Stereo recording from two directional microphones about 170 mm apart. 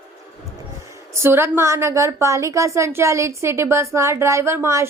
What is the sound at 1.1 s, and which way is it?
A woman's voice, 15° right (ahead or behind).